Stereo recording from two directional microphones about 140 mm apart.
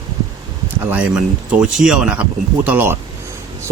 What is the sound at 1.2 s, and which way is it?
Speech, 5° right (ahead or behind).